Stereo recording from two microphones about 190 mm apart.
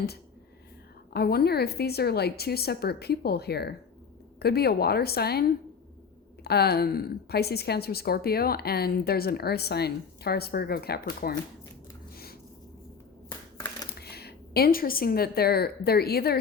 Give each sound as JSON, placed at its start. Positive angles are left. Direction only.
{"t": 1.1, "sound": "a woman's voice", "side_deg": 55}
{"t": 14.0, "sound": "a woman's voice", "side_deg": 55}